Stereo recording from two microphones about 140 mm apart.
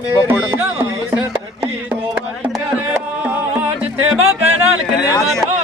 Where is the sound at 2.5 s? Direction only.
10° right (ahead or behind).